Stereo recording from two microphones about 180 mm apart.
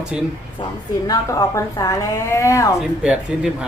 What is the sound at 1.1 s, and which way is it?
Speech, 15° left (ahead or behind).